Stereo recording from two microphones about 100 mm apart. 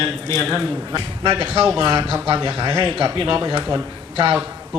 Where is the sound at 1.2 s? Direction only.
50° right (ahead or behind).